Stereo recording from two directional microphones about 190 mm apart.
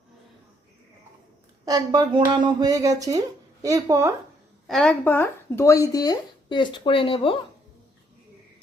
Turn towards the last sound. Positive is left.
turn(degrees=30)  # may be behind; listen again after turning